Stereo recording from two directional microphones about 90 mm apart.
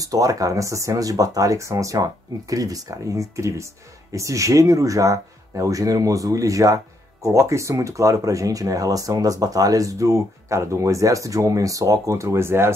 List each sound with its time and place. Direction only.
0.0 s speech: 40° right (ahead or behind)